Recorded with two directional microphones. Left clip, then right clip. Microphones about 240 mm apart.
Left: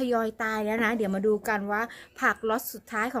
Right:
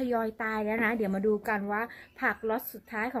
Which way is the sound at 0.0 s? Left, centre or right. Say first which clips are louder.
Left 3 dB; centre.